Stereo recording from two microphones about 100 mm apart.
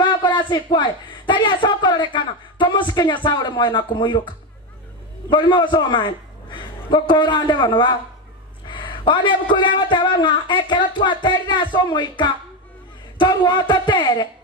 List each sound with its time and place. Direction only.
0.0 s a man's voice: 50° left (ahead or behind)
5.3 s a man's voice: 55° left (ahead or behind)